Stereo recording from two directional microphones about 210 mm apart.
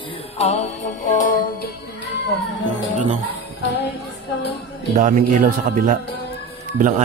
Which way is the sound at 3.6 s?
55° left (ahead or behind).